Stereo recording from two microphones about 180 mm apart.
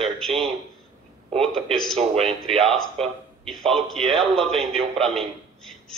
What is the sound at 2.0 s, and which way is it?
Speech, 35° right (ahead or behind).